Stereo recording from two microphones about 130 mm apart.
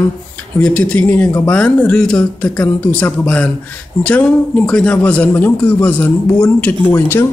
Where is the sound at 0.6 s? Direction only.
10° left (ahead or behind).